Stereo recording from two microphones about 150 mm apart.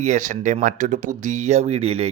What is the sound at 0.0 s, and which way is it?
Speech, 55° right (ahead or behind).